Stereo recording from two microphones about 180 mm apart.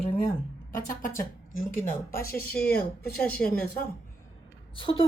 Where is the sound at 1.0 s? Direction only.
50° left (ahead or behind).